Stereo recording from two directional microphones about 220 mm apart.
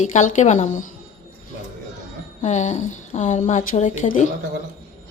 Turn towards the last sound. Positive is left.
turn(degrees=35)  # may be behind; listen again after turning